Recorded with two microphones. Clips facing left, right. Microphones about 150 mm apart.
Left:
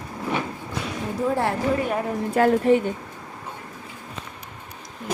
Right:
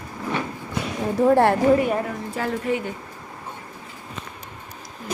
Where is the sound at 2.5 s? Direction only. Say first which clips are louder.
Left 5 dB; 40° left (ahead or behind).